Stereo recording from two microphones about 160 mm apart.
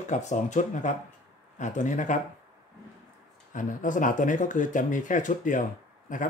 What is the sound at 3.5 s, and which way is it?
Speech, 55° left (ahead or behind).